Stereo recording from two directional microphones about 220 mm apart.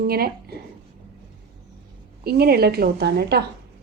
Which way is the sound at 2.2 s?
45° right (ahead or behind).